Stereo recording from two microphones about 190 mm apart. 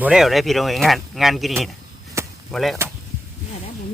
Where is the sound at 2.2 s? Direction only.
15° right (ahead or behind).